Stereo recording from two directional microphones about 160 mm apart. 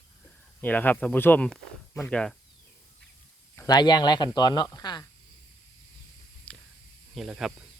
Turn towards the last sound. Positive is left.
turn(degrees=-5)  # may be behind; listen again after turning